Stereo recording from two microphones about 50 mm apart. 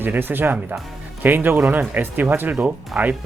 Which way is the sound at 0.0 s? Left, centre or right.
Right.